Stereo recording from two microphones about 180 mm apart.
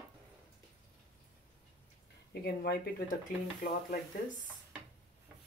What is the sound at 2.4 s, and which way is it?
Speech, 60° left (ahead or behind).